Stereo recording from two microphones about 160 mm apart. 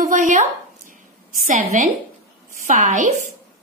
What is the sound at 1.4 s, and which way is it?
A woman's voice, 50° right (ahead or behind).